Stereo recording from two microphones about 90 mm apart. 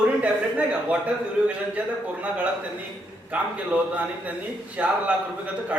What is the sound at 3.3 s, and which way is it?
A man's voice, 15° right (ahead or behind).